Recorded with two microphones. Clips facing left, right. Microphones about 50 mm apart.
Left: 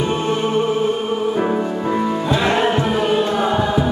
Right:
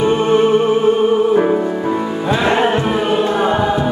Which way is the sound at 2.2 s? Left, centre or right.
Centre.